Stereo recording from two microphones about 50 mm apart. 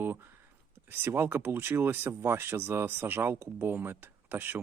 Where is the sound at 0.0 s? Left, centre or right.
Right.